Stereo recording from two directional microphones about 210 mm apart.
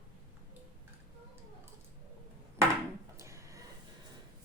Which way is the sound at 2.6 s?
15° right (ahead or behind).